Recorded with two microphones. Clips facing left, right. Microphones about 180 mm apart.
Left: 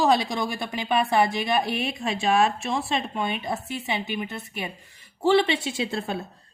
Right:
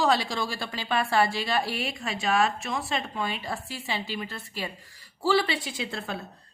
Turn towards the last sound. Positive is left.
turn(degrees=25)  # may be behind; listen again after turning